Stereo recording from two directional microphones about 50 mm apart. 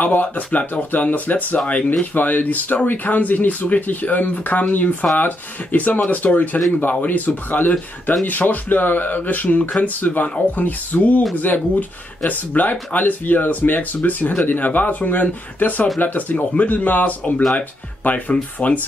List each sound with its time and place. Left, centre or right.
0.0 s speech: left
7.7 s speech: centre
8.3 s speech: left